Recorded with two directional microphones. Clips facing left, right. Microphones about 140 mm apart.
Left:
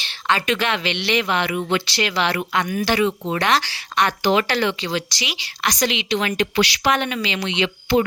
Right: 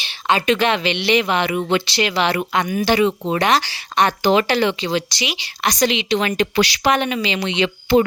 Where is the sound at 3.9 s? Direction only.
30° right (ahead or behind).